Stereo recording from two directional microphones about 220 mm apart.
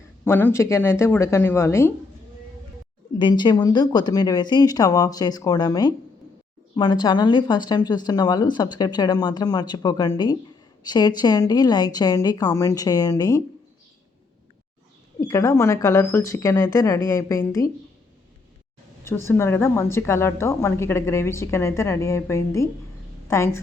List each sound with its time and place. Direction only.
0.3 s a woman's voice: 10° left (ahead or behind)
3.2 s a woman's voice: 20° left (ahead or behind)
15.2 s a woman's voice: 15° left (ahead or behind)
19.0 s a woman's voice: 10° left (ahead or behind)